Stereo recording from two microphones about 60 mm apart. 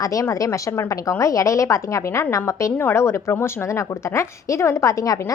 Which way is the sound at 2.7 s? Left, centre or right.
Left.